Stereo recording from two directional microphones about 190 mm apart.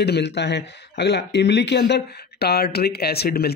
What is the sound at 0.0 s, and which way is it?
Speech, 60° left (ahead or behind).